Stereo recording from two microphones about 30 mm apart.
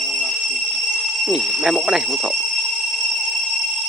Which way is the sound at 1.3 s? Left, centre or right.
Centre.